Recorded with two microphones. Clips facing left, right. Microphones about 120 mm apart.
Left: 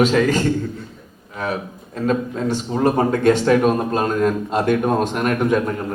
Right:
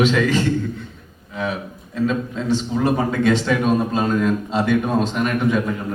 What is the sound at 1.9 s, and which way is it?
A man's voice, 45° left (ahead or behind).